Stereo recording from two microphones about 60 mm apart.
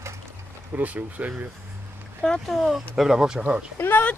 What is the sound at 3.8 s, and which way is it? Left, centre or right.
Speech, left.